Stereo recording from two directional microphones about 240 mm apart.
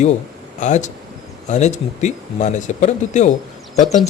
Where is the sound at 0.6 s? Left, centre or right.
Left.